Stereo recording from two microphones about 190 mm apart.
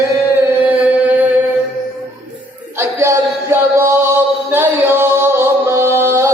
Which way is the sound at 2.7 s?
15° right (ahead or behind).